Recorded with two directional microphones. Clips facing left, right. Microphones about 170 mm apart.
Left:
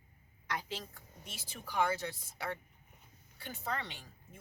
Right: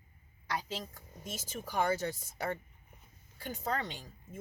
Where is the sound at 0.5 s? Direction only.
40° right (ahead or behind).